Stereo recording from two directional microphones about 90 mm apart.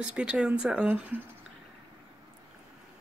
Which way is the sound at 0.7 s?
15° right (ahead or behind).